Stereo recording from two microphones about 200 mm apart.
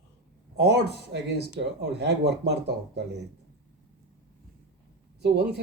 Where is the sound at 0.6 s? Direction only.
55° right (ahead or behind).